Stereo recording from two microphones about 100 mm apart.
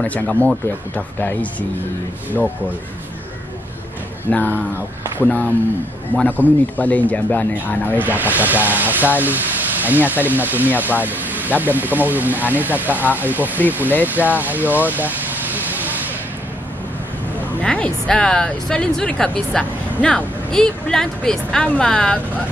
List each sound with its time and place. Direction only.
0.0 s speech: 15° left (ahead or behind)
4.3 s speech: 15° left (ahead or behind)
6.8 s speech: 15° left (ahead or behind)
8.0 s speech: 15° right (ahead or behind)
14.0 s vehicle: 15° right (ahead or behind)
17.6 s speech: 15° left (ahead or behind)